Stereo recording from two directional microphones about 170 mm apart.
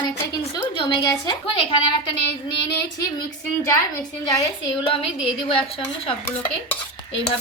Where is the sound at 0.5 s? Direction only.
25° left (ahead or behind).